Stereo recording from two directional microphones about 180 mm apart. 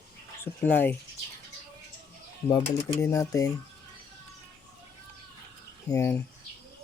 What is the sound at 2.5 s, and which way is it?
Speech, 20° left (ahead or behind).